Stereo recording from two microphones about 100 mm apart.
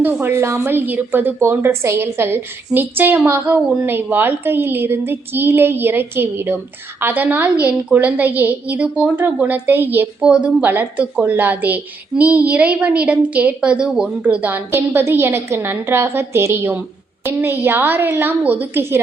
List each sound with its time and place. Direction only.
0.0 s a woman's voice: 20° right (ahead or behind)
10.2 s a woman's voice: 10° right (ahead or behind)